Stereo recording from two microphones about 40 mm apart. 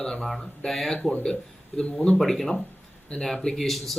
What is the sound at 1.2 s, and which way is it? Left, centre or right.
Speech, centre.